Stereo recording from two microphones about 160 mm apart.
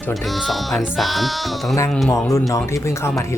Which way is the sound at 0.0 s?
Centre (ahead or behind).